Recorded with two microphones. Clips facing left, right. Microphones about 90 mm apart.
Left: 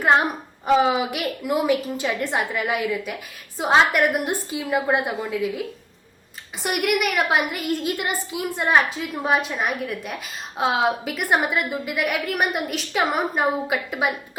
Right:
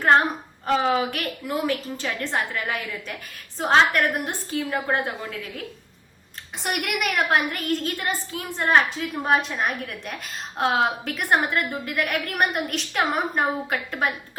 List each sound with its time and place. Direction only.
0.0 s a woman's voice: 10° left (ahead or behind)
6.6 s a woman's voice: centre (ahead or behind)